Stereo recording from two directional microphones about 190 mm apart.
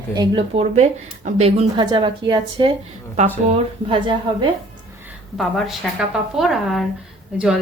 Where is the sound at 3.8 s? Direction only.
25° right (ahead or behind).